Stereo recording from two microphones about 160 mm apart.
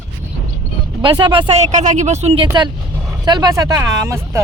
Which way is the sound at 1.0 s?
30° right (ahead or behind).